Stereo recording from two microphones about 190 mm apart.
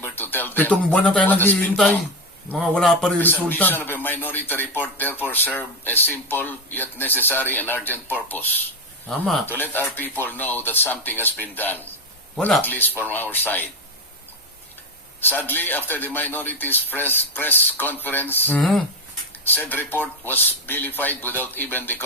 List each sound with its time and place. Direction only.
0.0 s a man's voice: 10° left (ahead or behind)
15.4 s a man's voice: 10° left (ahead or behind)